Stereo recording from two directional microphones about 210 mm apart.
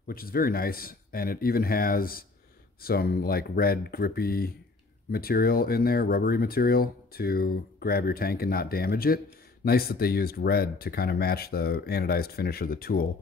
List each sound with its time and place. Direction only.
0.0 s speech: 45° left (ahead or behind)